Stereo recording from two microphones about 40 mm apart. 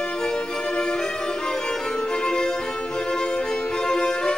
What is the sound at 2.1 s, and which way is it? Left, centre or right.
Music, centre.